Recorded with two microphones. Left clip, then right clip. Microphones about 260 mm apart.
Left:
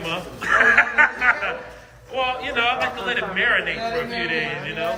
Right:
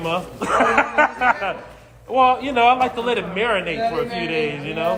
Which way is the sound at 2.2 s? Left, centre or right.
Centre.